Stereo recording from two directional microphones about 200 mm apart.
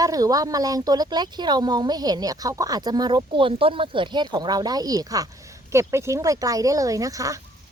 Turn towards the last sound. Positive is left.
turn(degrees=-15)  # may be behind; listen again after turning